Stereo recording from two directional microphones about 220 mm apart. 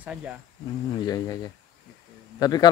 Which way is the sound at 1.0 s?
15° left (ahead or behind).